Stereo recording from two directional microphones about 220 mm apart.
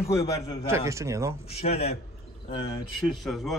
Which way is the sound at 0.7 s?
15° right (ahead or behind).